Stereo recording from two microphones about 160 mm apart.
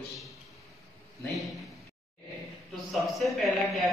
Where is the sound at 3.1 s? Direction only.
Centre (ahead or behind).